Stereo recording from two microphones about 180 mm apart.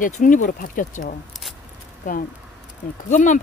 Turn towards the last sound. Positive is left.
turn(degrees=45)  # may be behind; listen again after turning